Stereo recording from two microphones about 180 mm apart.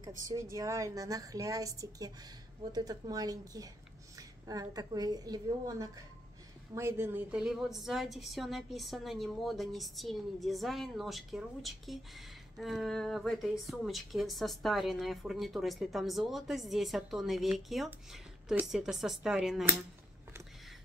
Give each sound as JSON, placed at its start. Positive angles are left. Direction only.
{"t": 0.2, "sound": "a woman's voice", "side_deg": -15}